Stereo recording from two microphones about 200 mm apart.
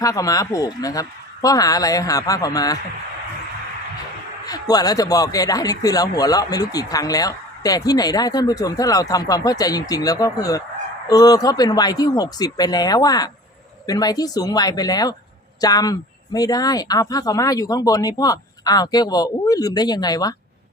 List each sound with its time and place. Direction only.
0.0 s speech: 15° left (ahead or behind)
4.4 s speech: 20° left (ahead or behind)